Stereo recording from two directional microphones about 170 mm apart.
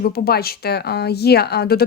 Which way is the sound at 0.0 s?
65° left (ahead or behind).